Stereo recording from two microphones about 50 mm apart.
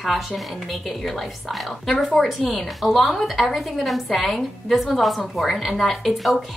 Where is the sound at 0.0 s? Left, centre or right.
Centre.